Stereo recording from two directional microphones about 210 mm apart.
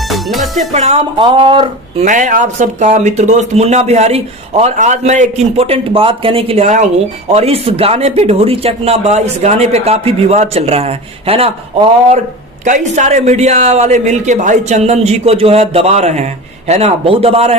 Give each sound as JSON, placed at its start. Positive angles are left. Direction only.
{"t": 0.1, "sound": "music", "side_deg": 0}
{"t": 0.7, "sound": "speech", "side_deg": -30}
{"t": 12.6, "sound": "speech", "side_deg": -35}